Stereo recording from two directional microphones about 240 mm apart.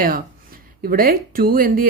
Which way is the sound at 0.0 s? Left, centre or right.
Right.